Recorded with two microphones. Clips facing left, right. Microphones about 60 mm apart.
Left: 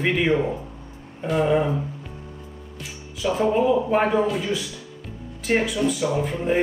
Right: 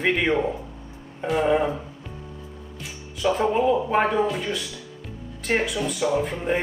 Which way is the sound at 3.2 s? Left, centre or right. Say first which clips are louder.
Right 2 dB; right.